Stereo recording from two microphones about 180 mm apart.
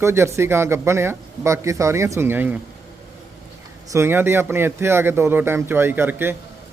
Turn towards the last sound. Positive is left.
turn(degrees=-10)  # may be behind; listen again after turning